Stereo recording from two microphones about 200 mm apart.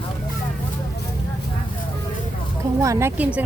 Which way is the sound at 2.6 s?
15° right (ahead or behind).